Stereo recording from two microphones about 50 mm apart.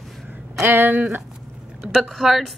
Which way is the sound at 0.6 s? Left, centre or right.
Right.